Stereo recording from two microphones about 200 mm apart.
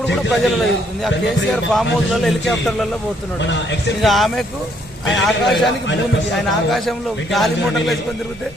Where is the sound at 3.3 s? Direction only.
60° left (ahead or behind).